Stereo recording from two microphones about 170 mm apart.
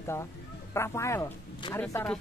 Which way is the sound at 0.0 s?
15° left (ahead or behind).